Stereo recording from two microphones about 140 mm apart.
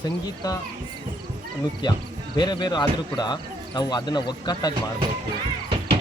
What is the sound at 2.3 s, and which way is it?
Speech, 30° left (ahead or behind).